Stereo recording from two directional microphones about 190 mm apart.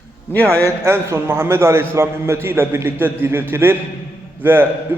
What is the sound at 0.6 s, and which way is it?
A man's voice, 15° right (ahead or behind).